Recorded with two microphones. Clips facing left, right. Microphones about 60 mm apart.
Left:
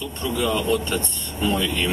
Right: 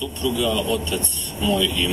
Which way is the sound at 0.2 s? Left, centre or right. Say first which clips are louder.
Right 1 dB; left.